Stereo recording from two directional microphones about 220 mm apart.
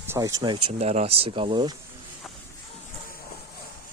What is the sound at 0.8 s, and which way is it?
Speech, 30° right (ahead or behind).